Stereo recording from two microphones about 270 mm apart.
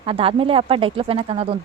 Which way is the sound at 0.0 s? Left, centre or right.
Centre.